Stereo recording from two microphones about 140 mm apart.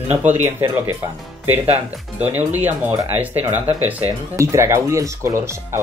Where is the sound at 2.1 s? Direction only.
15° right (ahead or behind).